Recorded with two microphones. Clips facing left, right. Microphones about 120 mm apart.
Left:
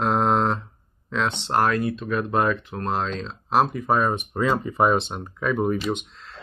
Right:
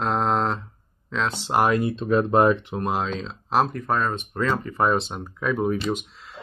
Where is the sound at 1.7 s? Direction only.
25° right (ahead or behind).